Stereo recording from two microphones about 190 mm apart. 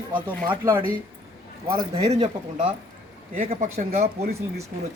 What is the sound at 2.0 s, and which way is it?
Speech, 30° right (ahead or behind).